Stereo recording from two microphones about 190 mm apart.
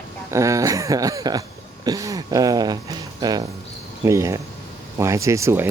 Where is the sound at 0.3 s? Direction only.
15° right (ahead or behind).